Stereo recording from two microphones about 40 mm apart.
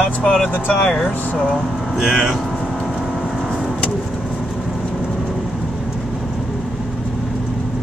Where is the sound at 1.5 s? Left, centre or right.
Centre.